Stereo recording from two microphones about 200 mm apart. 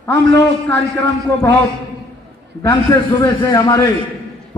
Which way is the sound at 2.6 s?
15° left (ahead or behind).